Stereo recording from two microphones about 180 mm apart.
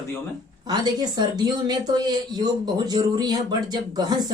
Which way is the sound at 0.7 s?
25° right (ahead or behind).